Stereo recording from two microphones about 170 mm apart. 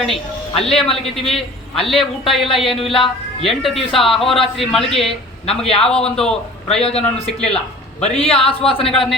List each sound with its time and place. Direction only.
0.0 s a man's voice: centre (ahead or behind)
6.8 s a man's voice: 35° left (ahead or behind)
7.3 s a man's voice: 5° left (ahead or behind)
8.0 s a man's voice: 35° left (ahead or behind)
8.9 s a man's voice: centre (ahead or behind)